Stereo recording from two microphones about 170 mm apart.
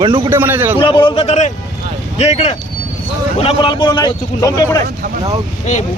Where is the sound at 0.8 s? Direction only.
30° left (ahead or behind).